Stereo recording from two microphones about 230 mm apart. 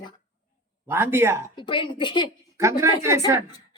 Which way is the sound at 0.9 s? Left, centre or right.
Centre.